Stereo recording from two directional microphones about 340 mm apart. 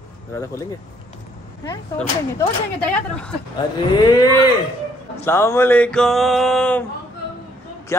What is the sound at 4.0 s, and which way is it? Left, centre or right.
Speech, centre.